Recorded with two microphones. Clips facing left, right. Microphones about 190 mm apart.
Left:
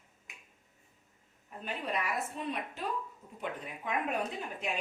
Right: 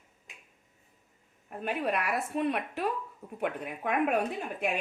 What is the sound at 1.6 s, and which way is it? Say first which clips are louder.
A woman's voice: right 5 dB; 65° right (ahead or behind).